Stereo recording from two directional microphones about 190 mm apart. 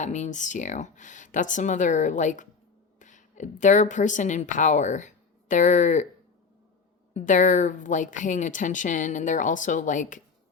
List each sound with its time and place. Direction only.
0.0 s a woman's voice: 40° left (ahead or behind)
7.1 s speech: 40° left (ahead or behind)